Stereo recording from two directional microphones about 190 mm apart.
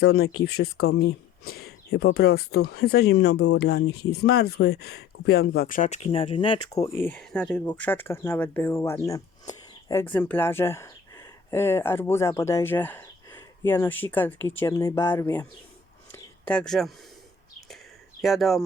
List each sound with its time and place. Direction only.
0.0 s speech: 55° left (ahead or behind); by 1.5 s 75° left (ahead or behind)
2.0 s speech: 55° left (ahead or behind); by 6.8 s 20° left (ahead or behind)
7.0 s speech: 5° left (ahead or behind)
16.1 s a sound: 5° left (ahead or behind)
18.2 s speech: centre (ahead or behind)